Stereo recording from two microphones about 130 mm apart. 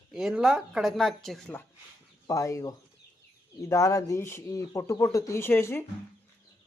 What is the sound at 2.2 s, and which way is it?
Speech, 25° left (ahead or behind).